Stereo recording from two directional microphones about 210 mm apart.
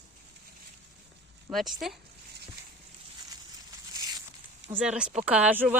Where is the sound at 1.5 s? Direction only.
Centre (ahead or behind).